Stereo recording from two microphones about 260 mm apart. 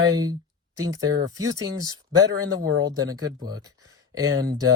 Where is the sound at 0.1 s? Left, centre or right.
Centre.